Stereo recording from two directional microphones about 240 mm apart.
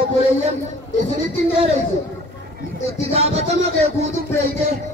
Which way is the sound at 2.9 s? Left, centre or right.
Right.